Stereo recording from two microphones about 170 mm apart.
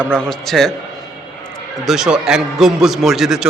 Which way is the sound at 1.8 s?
5° right (ahead or behind).